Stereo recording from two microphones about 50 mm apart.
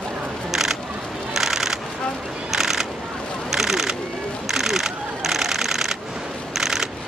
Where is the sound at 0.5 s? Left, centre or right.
Centre.